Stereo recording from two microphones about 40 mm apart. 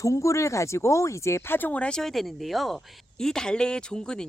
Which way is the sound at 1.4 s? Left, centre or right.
Left.